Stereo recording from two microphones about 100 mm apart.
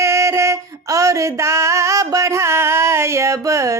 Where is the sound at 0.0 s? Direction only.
30° right (ahead or behind).